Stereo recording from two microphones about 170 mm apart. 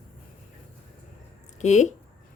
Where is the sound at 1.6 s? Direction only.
45° left (ahead or behind).